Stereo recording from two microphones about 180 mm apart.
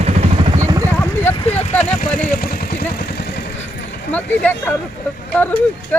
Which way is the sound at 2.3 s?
55° left (ahead or behind).